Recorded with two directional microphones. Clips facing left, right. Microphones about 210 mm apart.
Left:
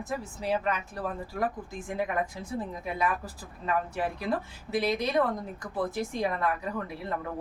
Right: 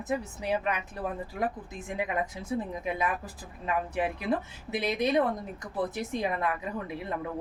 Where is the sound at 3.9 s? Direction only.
20° right (ahead or behind).